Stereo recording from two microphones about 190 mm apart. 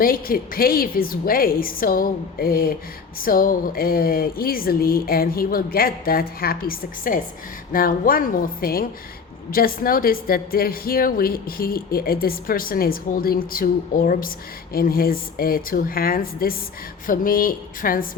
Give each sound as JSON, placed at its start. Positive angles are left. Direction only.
{"t": 0.0, "sound": "a woman's voice", "side_deg": 50}